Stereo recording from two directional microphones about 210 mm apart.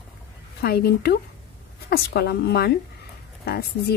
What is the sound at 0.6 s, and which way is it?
A woman's voice, 50° left (ahead or behind).